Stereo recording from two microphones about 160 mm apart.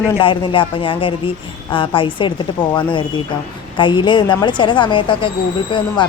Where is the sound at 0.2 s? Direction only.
30° left (ahead or behind).